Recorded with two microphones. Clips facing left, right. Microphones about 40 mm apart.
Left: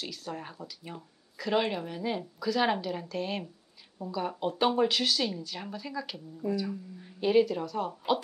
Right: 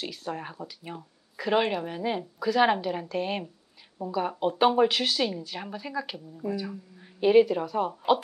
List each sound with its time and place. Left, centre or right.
0.0 s speech: centre